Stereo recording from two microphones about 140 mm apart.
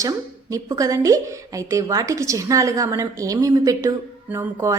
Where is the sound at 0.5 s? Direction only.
25° right (ahead or behind).